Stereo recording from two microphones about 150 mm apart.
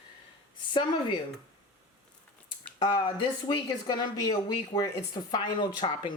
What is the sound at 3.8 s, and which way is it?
Speech, 30° left (ahead or behind).